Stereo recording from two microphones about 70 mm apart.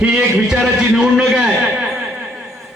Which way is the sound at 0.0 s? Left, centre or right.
Centre.